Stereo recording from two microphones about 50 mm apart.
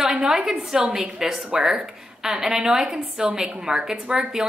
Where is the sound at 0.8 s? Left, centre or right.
Right.